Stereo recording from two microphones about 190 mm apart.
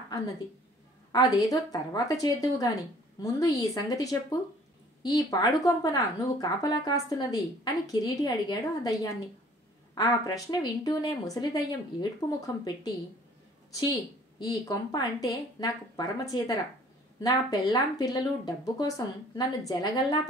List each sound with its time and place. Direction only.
1.1 s speech: 20° left (ahead or behind)